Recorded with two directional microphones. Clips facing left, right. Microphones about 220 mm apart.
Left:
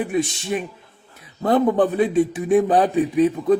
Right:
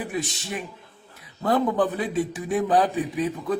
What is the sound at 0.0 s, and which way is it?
Speech, 25° left (ahead or behind).